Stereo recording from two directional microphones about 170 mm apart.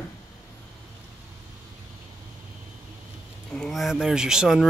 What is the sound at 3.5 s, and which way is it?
Speech, centre (ahead or behind).